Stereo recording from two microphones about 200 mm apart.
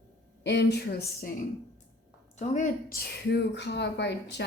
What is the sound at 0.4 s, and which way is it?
Speech, 55° left (ahead or behind).